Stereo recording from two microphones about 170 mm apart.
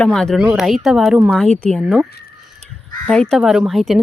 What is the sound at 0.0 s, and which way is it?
Speech, 5° left (ahead or behind).